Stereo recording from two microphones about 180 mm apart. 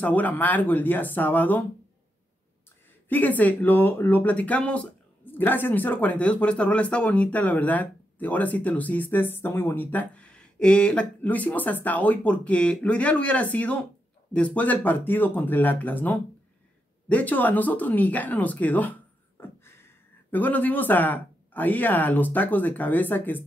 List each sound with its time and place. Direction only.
0.0 s speech: 10° left (ahead or behind)
3.1 s speech: 10° left (ahead or behind)